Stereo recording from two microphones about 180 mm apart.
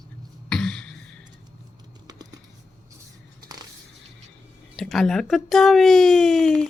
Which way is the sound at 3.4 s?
20° right (ahead or behind).